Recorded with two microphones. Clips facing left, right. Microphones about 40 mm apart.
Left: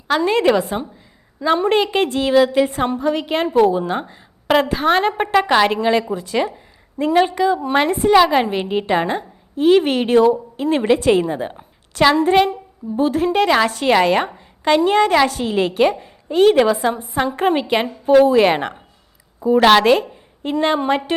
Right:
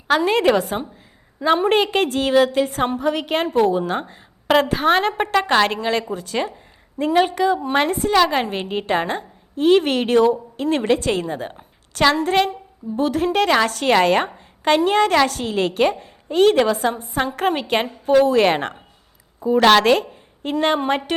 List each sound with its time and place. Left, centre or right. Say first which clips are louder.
0.1 s a woman's voice: left 1 dB; centre
1.9 s a woman's voice: left 1 dB; centre
2.8 s a woman's voice: left 1 dB; centre
3.1 s a woman's voice: left 2 dB; centre
7.6 s a woman's voice: left 2 dB; centre
7.9 s a woman's voice: left 4 dB; left
8.1 s a woman's voice: left 5 dB; centre
14.3 s a sound: left 1 dB; centre
14.8 s a woman's voice: left 2 dB; centre
20.7 s a woman's voice: left 2 dB; centre